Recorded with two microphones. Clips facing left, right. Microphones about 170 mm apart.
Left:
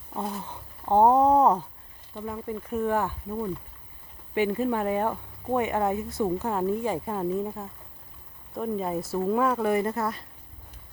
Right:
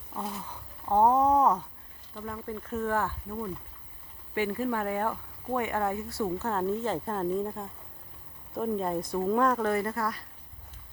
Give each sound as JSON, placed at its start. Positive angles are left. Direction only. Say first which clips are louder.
{"t": 0.2, "sound": "speech", "louder": "left 4 dB", "side_deg": 30}
{"t": 2.1, "sound": "speech", "louder": "left 4 dB", "side_deg": 20}